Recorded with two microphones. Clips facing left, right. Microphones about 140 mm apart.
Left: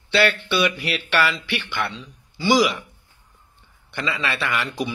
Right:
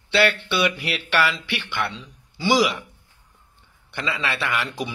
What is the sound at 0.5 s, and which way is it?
Speech, 15° right (ahead or behind).